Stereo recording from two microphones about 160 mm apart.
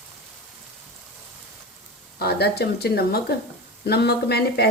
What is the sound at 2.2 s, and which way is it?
Speech, 90° left.